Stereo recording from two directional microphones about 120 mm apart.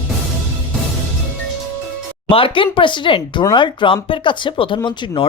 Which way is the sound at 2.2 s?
45° left (ahead or behind).